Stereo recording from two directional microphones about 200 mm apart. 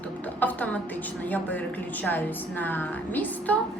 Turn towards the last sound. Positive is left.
turn(degrees=10)  # may be behind; listen again after turning